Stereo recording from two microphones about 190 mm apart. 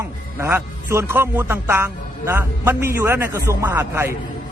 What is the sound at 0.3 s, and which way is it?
A man's voice, 10° right (ahead or behind).